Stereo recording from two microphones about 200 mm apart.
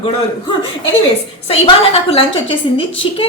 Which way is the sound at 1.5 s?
30° left (ahead or behind).